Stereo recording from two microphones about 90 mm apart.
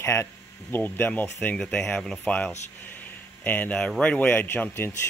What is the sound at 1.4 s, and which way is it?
Speech, 10° left (ahead or behind).